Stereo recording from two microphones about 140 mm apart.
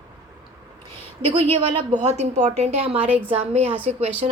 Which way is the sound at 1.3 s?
40° right (ahead or behind).